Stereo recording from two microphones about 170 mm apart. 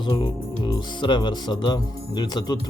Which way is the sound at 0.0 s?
25° left (ahead or behind).